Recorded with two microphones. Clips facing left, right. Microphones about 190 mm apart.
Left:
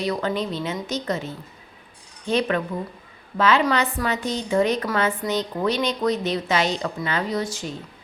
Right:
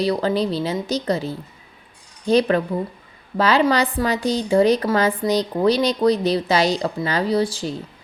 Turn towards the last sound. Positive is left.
turn(degrees=-30)  # may be behind; listen again after turning